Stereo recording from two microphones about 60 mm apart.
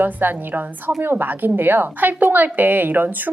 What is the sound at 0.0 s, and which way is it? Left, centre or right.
A woman's voice, right.